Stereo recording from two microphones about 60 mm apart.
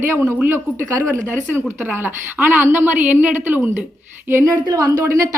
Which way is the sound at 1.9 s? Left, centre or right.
Right.